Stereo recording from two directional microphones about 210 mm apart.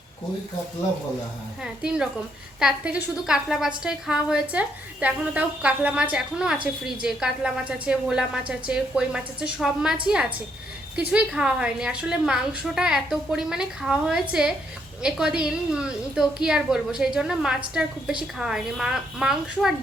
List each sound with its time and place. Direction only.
1.6 s a woman's voice: 5° right (ahead or behind)